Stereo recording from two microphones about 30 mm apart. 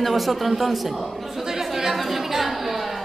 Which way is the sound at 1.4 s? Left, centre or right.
Centre.